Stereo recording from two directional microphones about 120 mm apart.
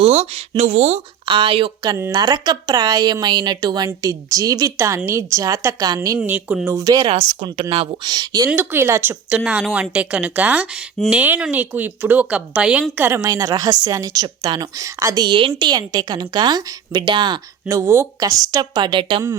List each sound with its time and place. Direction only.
0.0 s speech: 60° right (ahead or behind)
1.2 s speech: 40° right (ahead or behind)
2.1 s a woman's voice: 35° right (ahead or behind)
6.1 s speech: 10° right (ahead or behind)
6.7 s a woman's voice: 25° right (ahead or behind)
7.2 s speech: 70° right (ahead or behind)
7.5 s a woman's voice: 50° right (ahead or behind); by 8.4 s 30° right (ahead or behind)
8.4 s a woman's voice: 15° right (ahead or behind)
9.4 s speech: 5° right (ahead or behind)
13.0 s a woman's voice: 20° right (ahead or behind); by 17.4 s 40° right (ahead or behind)
17.7 s a woman's voice: 25° right (ahead or behind); by 19.2 s 45° right (ahead or behind)